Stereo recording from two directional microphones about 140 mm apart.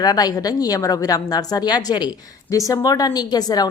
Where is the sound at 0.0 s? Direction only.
30° left (ahead or behind).